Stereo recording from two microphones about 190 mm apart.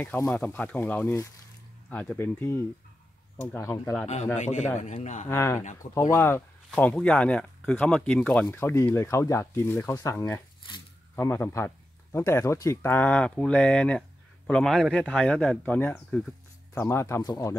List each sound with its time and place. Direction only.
0.0 s speech: 10° left (ahead or behind)
4.4 s a man's voice: 40° left (ahead or behind)
5.3 s speech: 15° left (ahead or behind)